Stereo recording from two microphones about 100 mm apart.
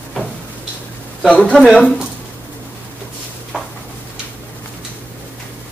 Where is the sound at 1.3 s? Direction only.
10° left (ahead or behind).